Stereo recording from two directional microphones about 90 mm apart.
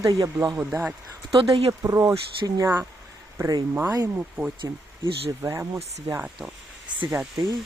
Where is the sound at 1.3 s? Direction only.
85° right.